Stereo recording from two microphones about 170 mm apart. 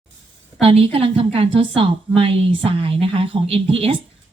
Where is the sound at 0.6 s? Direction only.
35° right (ahead or behind).